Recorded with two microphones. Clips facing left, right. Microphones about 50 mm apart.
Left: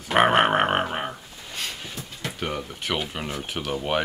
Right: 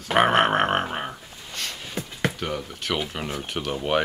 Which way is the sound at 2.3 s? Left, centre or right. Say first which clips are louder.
Even; centre.